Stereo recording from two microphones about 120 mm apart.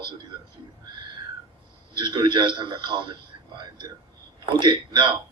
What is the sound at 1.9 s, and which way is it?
A man's voice, 40° right (ahead or behind).